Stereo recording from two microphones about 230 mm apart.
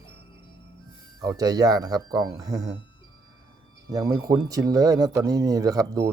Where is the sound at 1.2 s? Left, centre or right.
Centre.